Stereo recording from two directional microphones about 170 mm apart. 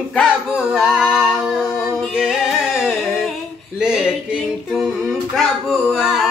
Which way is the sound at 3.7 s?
5° right (ahead or behind).